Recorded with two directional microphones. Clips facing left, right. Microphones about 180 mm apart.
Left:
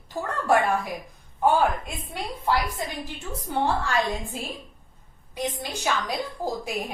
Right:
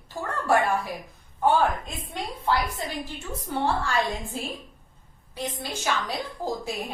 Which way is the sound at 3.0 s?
15° left (ahead or behind).